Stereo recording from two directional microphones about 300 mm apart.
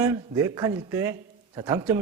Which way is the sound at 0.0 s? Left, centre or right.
Centre.